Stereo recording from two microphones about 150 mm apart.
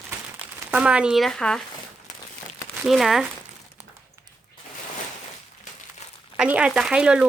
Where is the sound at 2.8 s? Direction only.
Centre (ahead or behind).